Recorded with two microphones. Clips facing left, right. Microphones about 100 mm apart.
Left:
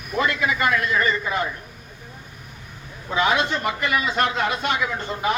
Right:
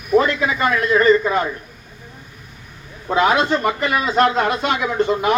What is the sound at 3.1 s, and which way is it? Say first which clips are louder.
A man's voice: right 5 dB; 50° right (ahead or behind).